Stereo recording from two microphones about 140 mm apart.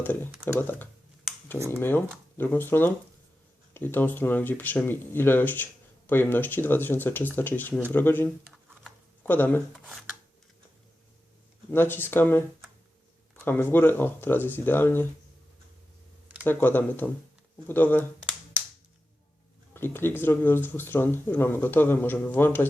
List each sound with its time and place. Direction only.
0.0 s speech: 10° left (ahead or behind)
1.5 s speech: 20° right (ahead or behind)
1.8 s speech: 15° left (ahead or behind)
11.7 s speech: 15° left (ahead or behind)
16.4 s speech: 15° left (ahead or behind)
19.7 s speech: 15° left (ahead or behind)